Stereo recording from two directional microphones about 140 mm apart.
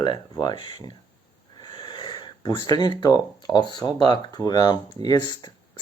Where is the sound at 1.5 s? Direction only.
30° left (ahead or behind).